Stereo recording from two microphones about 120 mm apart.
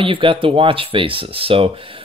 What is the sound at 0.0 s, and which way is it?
Speech, 45° right (ahead or behind).